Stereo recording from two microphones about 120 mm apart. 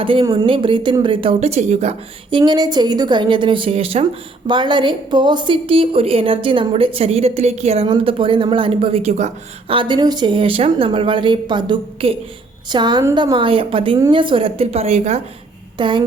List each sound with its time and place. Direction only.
0.0 s a woman's voice: 45° right (ahead or behind); by 2.0 s 65° right (ahead or behind)
2.3 s a woman's voice: 35° right (ahead or behind); by 4.0 s 55° right (ahead or behind)
4.4 s a woman's voice: 40° right (ahead or behind); by 9.3 s 70° right (ahead or behind)
9.6 s a woman's voice: 45° right (ahead or behind); by 15.2 s 60° right (ahead or behind)
15.8 s a woman's voice: 40° right (ahead or behind)